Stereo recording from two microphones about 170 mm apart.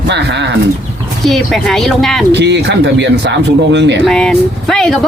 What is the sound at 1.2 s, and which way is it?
Speech, centre (ahead or behind).